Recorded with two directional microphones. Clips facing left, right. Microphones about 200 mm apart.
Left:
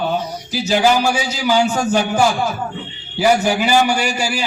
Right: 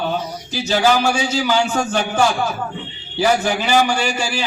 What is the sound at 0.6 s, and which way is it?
Speech, 10° left (ahead or behind).